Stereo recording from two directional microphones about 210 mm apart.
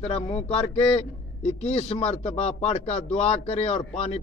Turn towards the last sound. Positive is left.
turn(degrees=30)  # may be behind; listen again after turning